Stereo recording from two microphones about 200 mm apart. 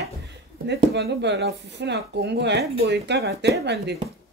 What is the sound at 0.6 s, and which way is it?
Speech, 55° right (ahead or behind).